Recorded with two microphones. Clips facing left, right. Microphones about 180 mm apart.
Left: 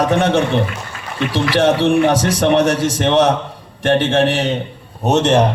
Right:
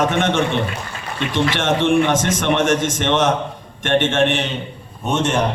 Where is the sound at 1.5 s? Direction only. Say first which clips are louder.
Left 5 dB; 35° left (ahead or behind).